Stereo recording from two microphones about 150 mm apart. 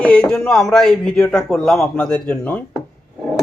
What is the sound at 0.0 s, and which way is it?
Speech, 5° left (ahead or behind).